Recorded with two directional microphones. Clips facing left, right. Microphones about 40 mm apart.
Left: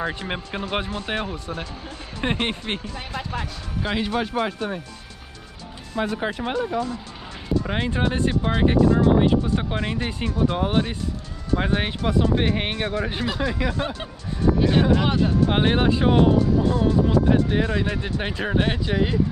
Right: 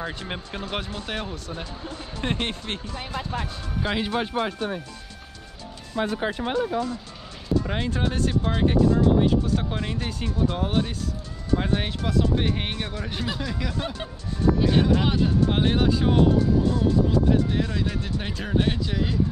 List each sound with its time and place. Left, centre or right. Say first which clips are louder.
0.0 s speech: left 4 dB; centre
3.8 s speech: left 1 dB; centre
7.6 s speech: left 3 dB; centre
15.4 s speech: left 3 dB; left